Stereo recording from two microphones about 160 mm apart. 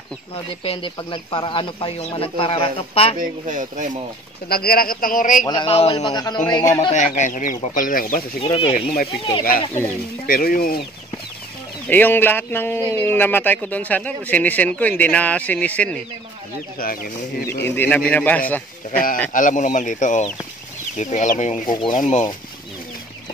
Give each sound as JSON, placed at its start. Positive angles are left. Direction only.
{"t": 0.7, "sound": "speech", "side_deg": 30}
{"t": 3.2, "sound": "speech", "side_deg": -55}
{"t": 4.5, "sound": "a man's voice", "side_deg": 70}
{"t": 5.5, "sound": "speech", "side_deg": 35}
{"t": 6.0, "sound": "speech", "side_deg": 25}
{"t": 6.9, "sound": "speech", "side_deg": 50}
{"t": 8.2, "sound": "speech", "side_deg": 35}
{"t": 10.2, "sound": "a man's voice", "side_deg": 65}
{"t": 11.9, "sound": "speech", "side_deg": 10}
{"t": 16.8, "sound": "a man's voice", "side_deg": 65}
{"t": 17.5, "sound": "speech", "side_deg": 15}
{"t": 18.9, "sound": "a man's voice", "side_deg": 60}